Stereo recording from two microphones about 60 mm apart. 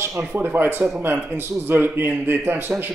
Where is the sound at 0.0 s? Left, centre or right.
Right.